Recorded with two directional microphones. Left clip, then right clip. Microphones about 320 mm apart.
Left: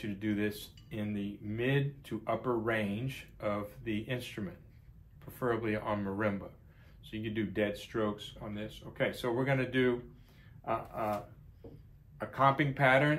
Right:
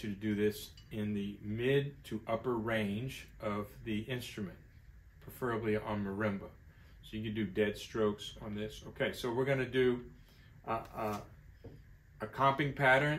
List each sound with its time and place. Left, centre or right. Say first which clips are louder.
0.0 s speech: right 1 dB; centre
12.2 s speech: left 3 dB; centre